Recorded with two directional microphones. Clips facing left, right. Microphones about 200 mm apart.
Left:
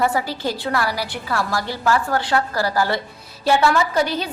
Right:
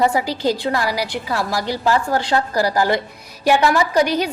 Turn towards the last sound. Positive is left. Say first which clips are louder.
# right 4 dB
turn(degrees=-15)  # may be behind; listen again after turning